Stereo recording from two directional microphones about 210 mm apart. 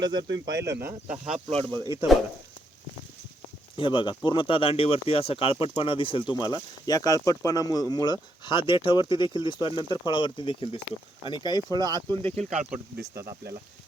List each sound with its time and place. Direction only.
0.0 s speech: 20° right (ahead or behind)
0.3 s speech: 55° right (ahead or behind)
1.1 s speech: 30° right (ahead or behind)
1.7 s speech: 15° right (ahead or behind)
3.8 s speech: 25° left (ahead or behind)
11.7 s speech: 20° right (ahead or behind)